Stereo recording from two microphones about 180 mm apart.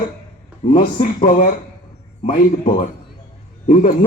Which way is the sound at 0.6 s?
40° left (ahead or behind).